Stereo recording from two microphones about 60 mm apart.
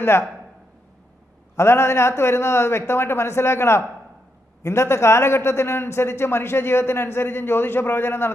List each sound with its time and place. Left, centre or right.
0.0 s a man's voice: left
1.5 s a man's voice: left